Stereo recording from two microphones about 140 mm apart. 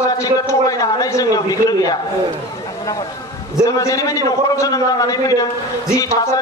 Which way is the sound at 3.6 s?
25° left (ahead or behind).